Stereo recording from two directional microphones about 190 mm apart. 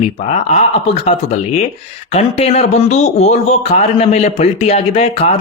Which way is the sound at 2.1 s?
30° left (ahead or behind).